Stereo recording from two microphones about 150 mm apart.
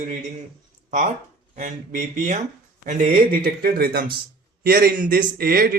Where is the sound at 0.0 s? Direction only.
50° right (ahead or behind).